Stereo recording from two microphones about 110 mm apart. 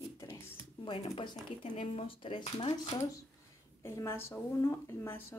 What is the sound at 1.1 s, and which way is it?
Speech, 60° left (ahead or behind).